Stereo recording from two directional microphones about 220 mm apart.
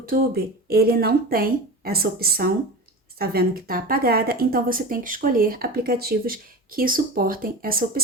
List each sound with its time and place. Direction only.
0.0 s speech: 40° right (ahead or behind)